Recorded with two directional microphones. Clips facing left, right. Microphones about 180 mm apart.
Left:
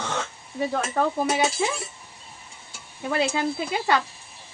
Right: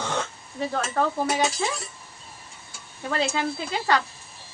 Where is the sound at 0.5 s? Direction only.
10° left (ahead or behind).